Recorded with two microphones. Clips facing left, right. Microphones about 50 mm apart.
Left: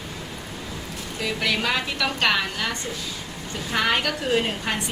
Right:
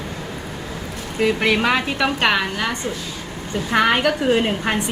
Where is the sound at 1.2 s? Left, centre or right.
Right.